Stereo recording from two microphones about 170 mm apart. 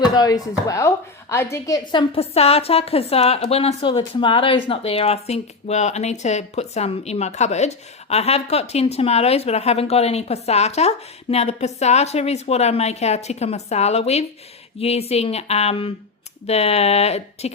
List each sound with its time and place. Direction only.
0.1 s a woman's voice: 20° left (ahead or behind); by 17.5 s 40° left (ahead or behind)